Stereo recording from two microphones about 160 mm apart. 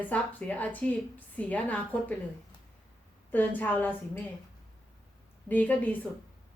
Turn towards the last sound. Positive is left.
turn(degrees=10)  # may be behind; listen again after turning